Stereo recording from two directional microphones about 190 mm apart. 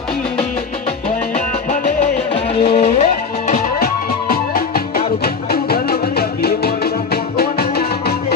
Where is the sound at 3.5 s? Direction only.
50° left (ahead or behind).